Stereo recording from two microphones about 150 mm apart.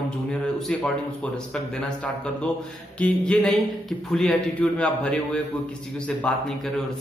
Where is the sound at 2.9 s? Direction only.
10° left (ahead or behind).